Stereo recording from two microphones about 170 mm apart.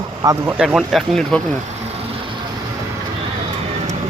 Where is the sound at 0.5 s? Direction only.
Centre (ahead or behind).